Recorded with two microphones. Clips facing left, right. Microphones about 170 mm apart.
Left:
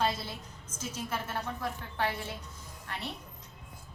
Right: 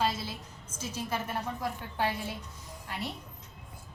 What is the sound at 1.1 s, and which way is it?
A woman's voice, 15° right (ahead or behind).